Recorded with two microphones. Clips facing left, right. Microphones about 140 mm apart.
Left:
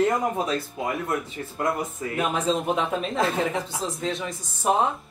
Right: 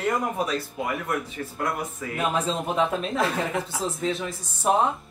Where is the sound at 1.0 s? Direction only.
25° left (ahead or behind).